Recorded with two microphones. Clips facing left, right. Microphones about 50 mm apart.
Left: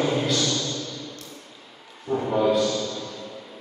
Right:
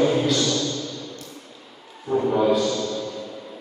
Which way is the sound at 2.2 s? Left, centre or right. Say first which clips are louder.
Right 1 dB; centre.